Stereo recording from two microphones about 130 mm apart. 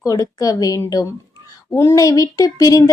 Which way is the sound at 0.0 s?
25° left (ahead or behind).